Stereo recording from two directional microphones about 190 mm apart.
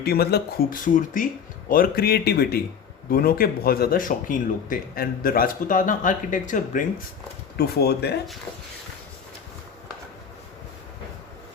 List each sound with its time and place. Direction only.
0.0 s speech: 55° left (ahead or behind)
7.6 s speech: 60° left (ahead or behind)